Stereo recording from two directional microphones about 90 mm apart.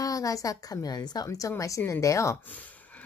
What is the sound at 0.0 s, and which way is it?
A woman's voice, 40° left (ahead or behind).